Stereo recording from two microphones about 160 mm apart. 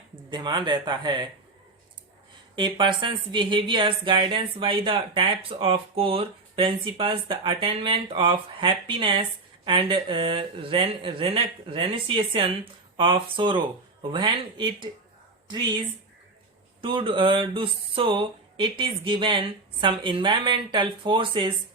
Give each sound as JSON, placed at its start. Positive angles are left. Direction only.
{"t": 0.3, "sound": "speech", "side_deg": -25}
{"t": 2.6, "sound": "speech", "side_deg": -30}
{"t": 16.8, "sound": "speech", "side_deg": -35}